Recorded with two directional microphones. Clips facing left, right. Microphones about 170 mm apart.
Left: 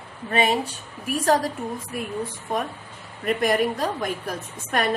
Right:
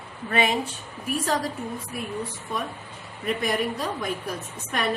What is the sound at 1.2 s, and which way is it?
Speech, 45° left (ahead or behind).